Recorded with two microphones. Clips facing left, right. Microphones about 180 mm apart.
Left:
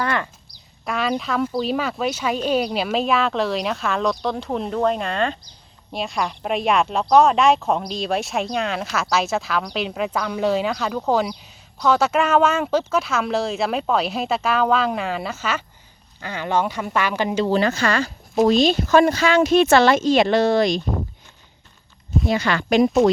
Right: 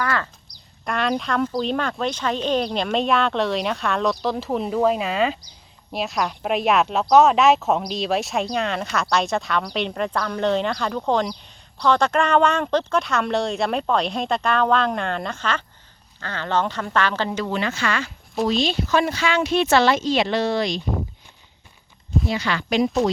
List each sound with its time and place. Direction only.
0.0 s a sound: 20° left (ahead or behind)
0.9 s speech: centre (ahead or behind)
17.3 s speech: 30° left (ahead or behind); by 20.8 s 45° left (ahead or behind)
22.3 s speech: 50° left (ahead or behind)